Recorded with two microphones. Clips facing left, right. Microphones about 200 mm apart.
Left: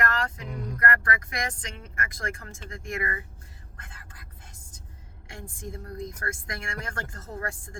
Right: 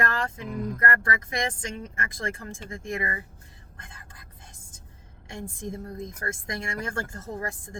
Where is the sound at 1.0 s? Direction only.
25° right (ahead or behind).